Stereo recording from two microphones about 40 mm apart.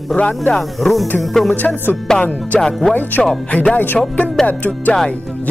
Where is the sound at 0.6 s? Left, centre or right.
Centre.